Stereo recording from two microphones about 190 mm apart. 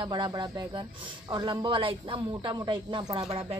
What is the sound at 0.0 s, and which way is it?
Speech, 20° right (ahead or behind).